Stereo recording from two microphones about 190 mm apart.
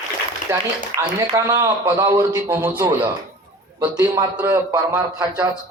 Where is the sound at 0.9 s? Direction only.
30° right (ahead or behind).